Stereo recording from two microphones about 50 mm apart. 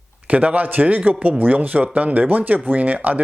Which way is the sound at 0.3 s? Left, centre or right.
Right.